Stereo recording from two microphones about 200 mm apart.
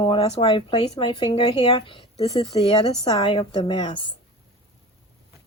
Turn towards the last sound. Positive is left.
turn(degrees=25)  # may be behind; listen again after turning